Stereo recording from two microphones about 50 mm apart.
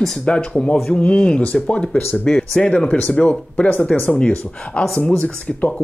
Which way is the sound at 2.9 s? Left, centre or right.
Left.